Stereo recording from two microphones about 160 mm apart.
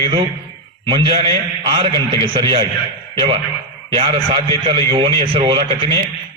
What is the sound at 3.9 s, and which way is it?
A man's voice, 30° right (ahead or behind).